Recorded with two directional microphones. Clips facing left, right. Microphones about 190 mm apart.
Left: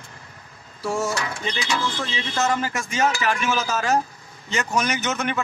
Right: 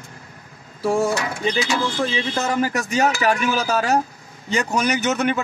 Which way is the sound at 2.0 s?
35° right (ahead or behind).